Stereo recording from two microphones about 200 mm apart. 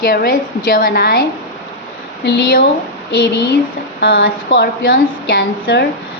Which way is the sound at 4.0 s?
55° left (ahead or behind).